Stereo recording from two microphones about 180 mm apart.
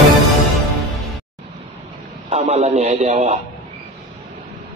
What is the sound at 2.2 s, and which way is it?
Speech, 35° right (ahead or behind).